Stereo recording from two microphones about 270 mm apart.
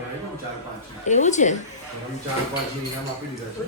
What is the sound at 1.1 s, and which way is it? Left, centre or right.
Speech, left.